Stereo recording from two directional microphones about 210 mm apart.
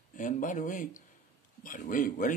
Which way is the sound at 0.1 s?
40° left (ahead or behind).